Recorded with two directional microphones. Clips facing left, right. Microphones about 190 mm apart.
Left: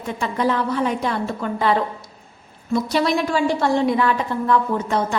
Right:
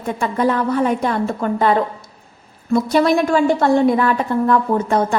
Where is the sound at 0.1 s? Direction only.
50° right (ahead or behind).